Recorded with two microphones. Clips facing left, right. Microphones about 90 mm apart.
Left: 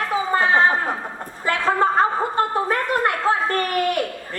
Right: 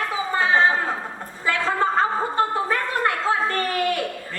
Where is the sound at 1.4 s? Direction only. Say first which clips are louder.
Left 3 dB; 20° left (ahead or behind).